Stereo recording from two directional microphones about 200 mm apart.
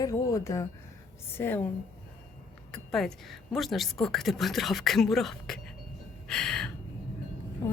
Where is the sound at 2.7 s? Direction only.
Centre (ahead or behind).